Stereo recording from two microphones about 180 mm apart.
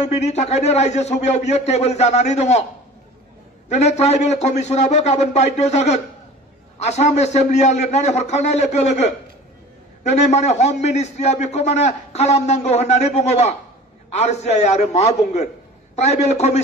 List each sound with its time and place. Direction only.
0.0 s a man's voice: 40° left (ahead or behind)
3.6 s a man's voice: 40° left (ahead or behind)
10.0 s a man's voice: 40° left (ahead or behind)